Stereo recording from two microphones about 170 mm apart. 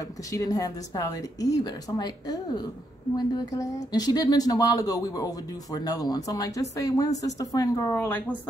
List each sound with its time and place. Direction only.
0.0 s speech: 20° left (ahead or behind)